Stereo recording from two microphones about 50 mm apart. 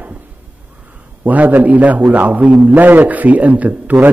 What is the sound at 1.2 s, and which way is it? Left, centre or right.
A man's voice, right.